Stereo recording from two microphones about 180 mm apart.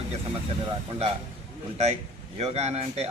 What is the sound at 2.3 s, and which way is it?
Speech, 35° right (ahead or behind).